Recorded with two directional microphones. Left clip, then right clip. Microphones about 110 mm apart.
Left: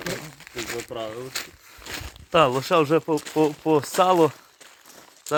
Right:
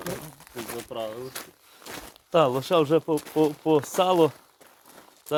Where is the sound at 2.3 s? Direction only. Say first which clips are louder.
Left 2 dB; 20° left (ahead or behind).